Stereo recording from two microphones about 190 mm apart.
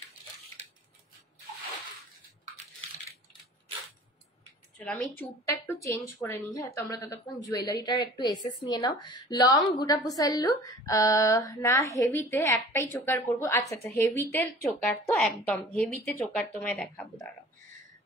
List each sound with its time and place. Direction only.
4.7 s a woman's voice: 5° left (ahead or behind)